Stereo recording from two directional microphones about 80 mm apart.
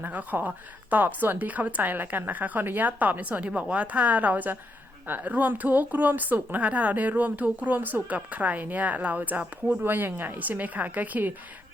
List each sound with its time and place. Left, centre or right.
0.0 s a woman's voice: right